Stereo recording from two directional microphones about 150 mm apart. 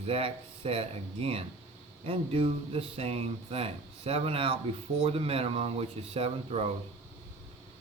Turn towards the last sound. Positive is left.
turn(degrees=-45)  # may be behind; listen again after turning